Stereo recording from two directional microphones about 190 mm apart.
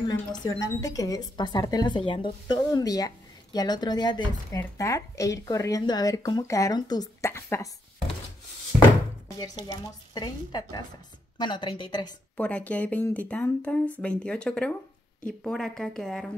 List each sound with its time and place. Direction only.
0.1 s speech: 20° left (ahead or behind)
9.4 s speech: 20° left (ahead or behind)
12.4 s speech: 5° left (ahead or behind)